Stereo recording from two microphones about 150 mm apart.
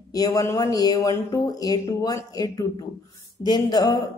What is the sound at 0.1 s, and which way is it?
Speech, 25° left (ahead or behind).